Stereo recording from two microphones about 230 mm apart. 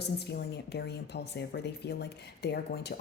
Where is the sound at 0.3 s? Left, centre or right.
Left.